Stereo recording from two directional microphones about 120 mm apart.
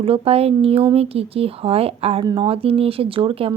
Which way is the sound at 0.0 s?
55° right (ahead or behind).